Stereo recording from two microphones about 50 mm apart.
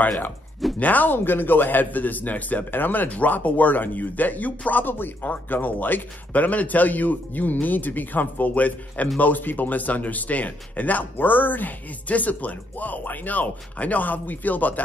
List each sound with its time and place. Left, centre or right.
0.7 s a man's voice: left